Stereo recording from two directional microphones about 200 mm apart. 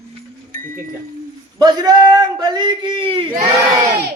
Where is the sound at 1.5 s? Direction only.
20° right (ahead or behind).